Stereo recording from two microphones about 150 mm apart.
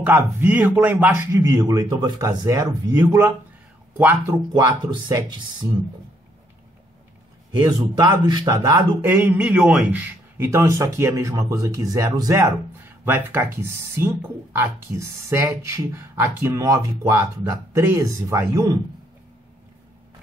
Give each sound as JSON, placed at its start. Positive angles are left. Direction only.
{"t": 0.0, "sound": "a man's voice", "side_deg": -10}
{"t": 7.6, "sound": "a man's voice", "side_deg": -30}
{"t": 9.1, "sound": "a man's voice", "side_deg": -10}